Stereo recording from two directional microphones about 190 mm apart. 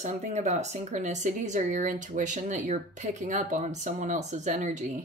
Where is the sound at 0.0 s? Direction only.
35° right (ahead or behind).